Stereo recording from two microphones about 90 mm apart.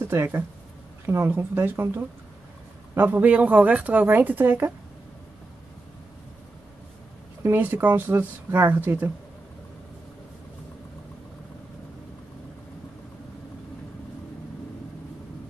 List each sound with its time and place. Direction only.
0.1 s speech: 25° right (ahead or behind)
7.5 s speech: 20° right (ahead or behind)